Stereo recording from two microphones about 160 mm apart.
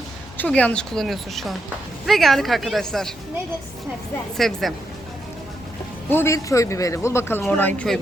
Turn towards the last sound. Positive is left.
turn(degrees=5)  # may be behind; listen again after turning